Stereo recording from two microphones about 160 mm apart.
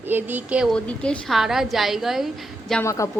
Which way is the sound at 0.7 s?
5° left (ahead or behind).